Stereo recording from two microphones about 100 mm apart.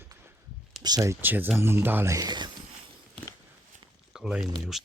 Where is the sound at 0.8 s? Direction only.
40° right (ahead or behind).